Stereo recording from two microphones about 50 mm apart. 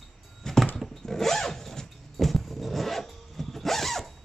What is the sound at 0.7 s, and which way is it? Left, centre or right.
Zipper, centre.